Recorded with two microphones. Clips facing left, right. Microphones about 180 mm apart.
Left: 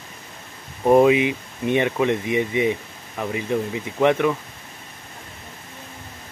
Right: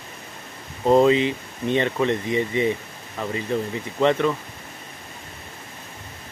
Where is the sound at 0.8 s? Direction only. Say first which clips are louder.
Left 2 dB; 15° left (ahead or behind).